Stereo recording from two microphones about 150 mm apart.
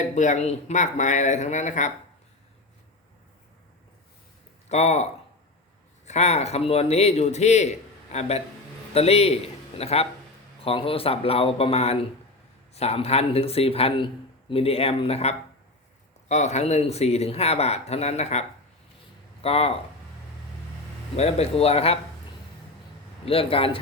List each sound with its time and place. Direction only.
0.0 s speech: 55° left (ahead or behind)
4.7 s speech: 45° left (ahead or behind)
6.1 s a man's voice: 50° left (ahead or behind)
21.2 s speech: 45° left (ahead or behind)
23.2 s speech: 40° left (ahead or behind)